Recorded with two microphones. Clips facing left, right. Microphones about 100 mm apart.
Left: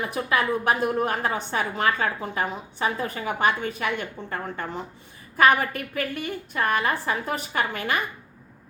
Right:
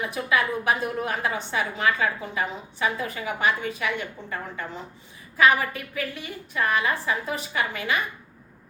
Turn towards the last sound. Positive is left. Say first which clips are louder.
# left 1 dB
turn(degrees=50)  # may be behind; listen again after turning